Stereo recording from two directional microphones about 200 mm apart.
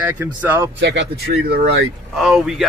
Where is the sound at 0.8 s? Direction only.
60° right (ahead or behind).